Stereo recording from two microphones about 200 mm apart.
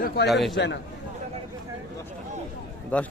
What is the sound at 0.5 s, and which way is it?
Speech, 60° left (ahead or behind).